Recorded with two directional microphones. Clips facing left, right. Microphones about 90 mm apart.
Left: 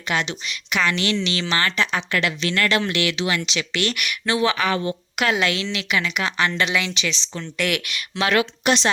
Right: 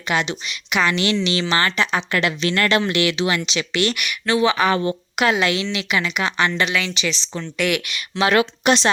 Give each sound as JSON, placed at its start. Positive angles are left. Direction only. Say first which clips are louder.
{"t": 0.1, "sound": "speech", "louder": "right 2 dB", "side_deg": -5}
{"t": 2.1, "sound": "speech", "louder": "right 2 dB", "side_deg": -30}
{"t": 2.8, "sound": "speech", "louder": "right 3 dB", "side_deg": -20}
{"t": 3.8, "sound": "speech", "louder": "right 2 dB", "side_deg": -5}
{"t": 4.7, "sound": "speech", "louder": "right 3 dB", "side_deg": -40}
{"t": 5.1, "sound": "a woman's voice", "louder": "right 3 dB", "side_deg": -20}
{"t": 5.4, "sound": "speech", "louder": "right 2 dB", "side_deg": -10}
{"t": 8.3, "sound": "speech", "louder": "right 2 dB", "side_deg": -30}